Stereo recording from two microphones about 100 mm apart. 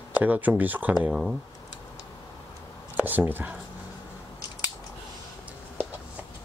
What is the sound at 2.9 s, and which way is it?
Speech, 20° right (ahead or behind).